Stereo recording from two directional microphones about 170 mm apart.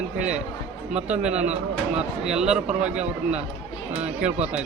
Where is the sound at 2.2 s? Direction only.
5° right (ahead or behind).